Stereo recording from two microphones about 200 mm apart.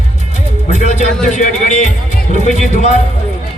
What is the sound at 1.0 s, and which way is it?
Speech, 35° left (ahead or behind).